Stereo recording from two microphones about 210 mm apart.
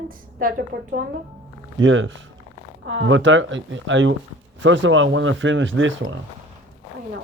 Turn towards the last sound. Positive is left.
turn(degrees=-65)  # may be behind; listen again after turning